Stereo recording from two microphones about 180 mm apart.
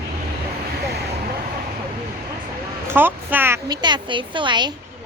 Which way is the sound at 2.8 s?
10° right (ahead or behind).